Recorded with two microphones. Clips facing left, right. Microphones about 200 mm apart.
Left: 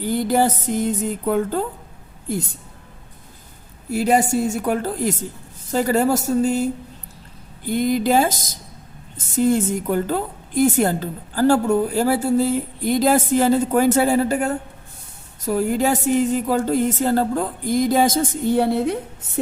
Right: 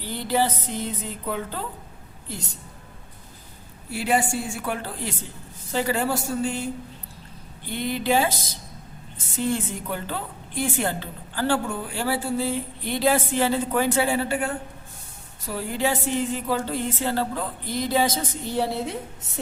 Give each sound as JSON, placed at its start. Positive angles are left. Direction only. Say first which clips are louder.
{"t": 0.0, "sound": "a woman's voice", "louder": "left 6 dB", "side_deg": 50}
{"t": 3.8, "sound": "a woman's voice", "louder": "left 6 dB", "side_deg": 40}